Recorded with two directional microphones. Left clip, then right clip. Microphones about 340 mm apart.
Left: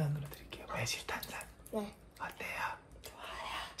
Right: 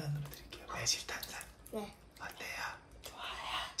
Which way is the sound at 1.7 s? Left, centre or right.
Centre.